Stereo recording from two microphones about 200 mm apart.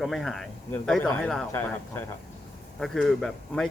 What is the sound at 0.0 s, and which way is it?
A man's voice, centre (ahead or behind).